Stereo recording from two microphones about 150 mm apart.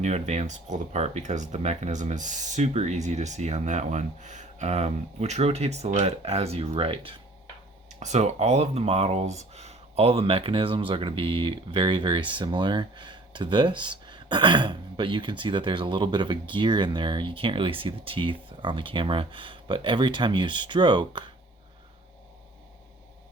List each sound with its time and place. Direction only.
0.0 s speech: 45° right (ahead or behind)
7.9 s speech: 50° right (ahead or behind); by 21.2 s 30° right (ahead or behind)